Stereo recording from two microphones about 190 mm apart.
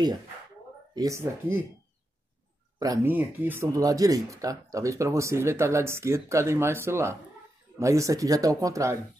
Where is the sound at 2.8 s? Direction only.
15° right (ahead or behind).